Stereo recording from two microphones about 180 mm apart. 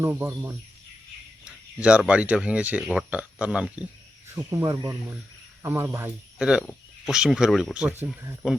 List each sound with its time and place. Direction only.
0.0 s speech: 10° right (ahead or behind)
4.4 s speech: 15° right (ahead or behind)